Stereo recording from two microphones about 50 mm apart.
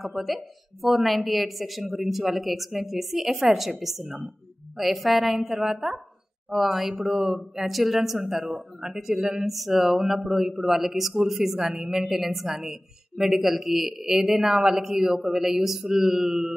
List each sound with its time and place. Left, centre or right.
0.0 s a man's voice: centre